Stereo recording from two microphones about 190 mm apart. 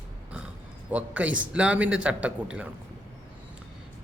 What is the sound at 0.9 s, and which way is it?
A man's voice, 5° right (ahead or behind).